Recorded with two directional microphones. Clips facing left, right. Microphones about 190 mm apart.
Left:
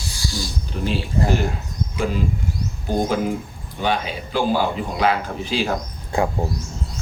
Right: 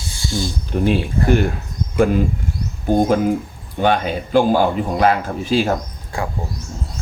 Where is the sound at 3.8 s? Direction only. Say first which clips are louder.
Right 6 dB; 50° right (ahead or behind).